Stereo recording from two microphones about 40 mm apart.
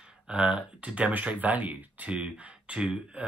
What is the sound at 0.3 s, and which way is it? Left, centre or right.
Speech, right.